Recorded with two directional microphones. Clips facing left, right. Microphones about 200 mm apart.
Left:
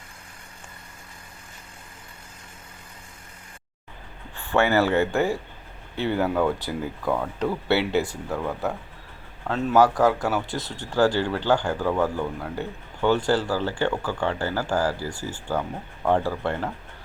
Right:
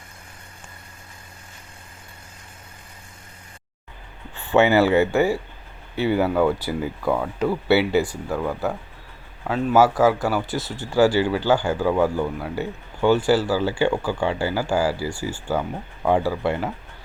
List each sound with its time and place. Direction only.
4.4 s speech: 20° right (ahead or behind)
4.9 s speech: centre (ahead or behind)